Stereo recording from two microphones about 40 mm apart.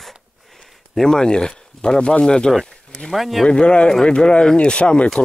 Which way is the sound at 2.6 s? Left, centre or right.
Left.